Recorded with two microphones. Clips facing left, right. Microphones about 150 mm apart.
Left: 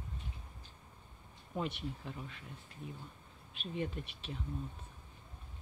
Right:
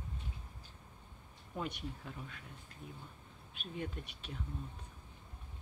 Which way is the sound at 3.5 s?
Centre (ahead or behind).